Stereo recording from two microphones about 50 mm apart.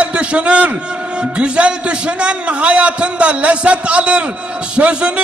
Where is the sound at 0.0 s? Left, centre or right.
Right.